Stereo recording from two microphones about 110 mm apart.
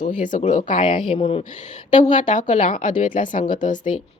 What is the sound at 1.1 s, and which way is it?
Speech, 60° left (ahead or behind).